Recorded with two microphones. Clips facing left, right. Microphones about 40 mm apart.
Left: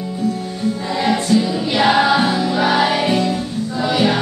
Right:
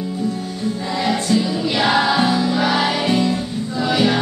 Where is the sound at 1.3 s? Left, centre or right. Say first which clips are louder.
Left 2 dB; centre.